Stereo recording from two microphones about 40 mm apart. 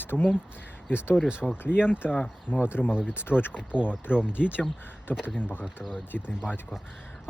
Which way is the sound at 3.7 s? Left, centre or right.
Right.